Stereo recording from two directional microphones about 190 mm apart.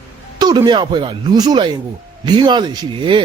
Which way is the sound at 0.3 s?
20° right (ahead or behind).